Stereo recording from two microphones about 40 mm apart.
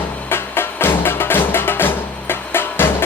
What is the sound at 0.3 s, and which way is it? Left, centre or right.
Music, left.